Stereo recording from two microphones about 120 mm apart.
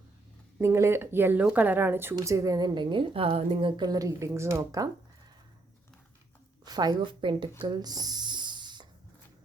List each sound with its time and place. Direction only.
0.6 s a woman's voice: 20° right (ahead or behind)
6.7 s a woman's voice: 35° right (ahead or behind)
7.6 s a sound: 35° right (ahead or behind)